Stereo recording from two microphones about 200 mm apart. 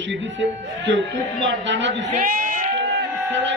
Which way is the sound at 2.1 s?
40° right (ahead or behind).